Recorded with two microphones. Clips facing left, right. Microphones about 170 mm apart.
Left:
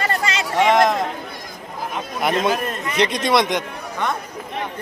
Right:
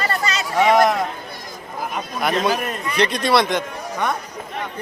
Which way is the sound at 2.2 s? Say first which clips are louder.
Left 1 dB; 25° left (ahead or behind).